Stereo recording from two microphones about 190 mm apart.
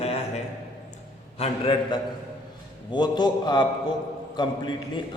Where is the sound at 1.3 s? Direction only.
35° left (ahead or behind).